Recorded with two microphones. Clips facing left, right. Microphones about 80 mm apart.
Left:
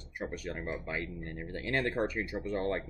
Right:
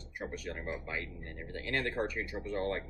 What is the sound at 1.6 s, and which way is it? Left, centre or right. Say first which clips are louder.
Speech: left 3 dB; left.